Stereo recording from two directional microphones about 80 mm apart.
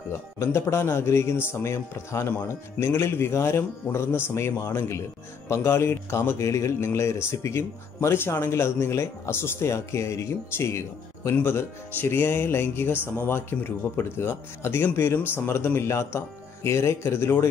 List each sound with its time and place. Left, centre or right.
0.1 s speech: left